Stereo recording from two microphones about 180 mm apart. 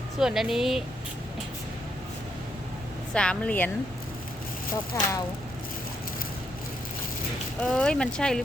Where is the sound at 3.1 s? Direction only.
5° left (ahead or behind).